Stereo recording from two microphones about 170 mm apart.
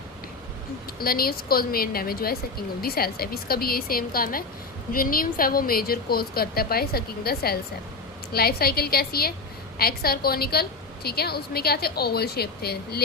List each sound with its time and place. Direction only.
0.9 s a woman's voice: 60° left (ahead or behind)